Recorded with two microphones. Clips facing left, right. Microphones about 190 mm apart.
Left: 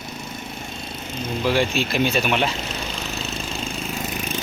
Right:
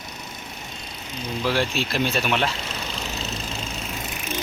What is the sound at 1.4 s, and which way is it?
Speech, centre (ahead or behind).